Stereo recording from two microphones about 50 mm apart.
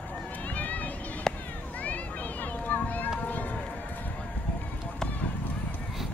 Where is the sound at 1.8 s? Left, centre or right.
Left.